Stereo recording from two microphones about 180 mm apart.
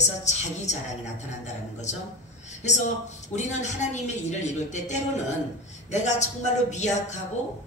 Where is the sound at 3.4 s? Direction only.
40° left (ahead or behind).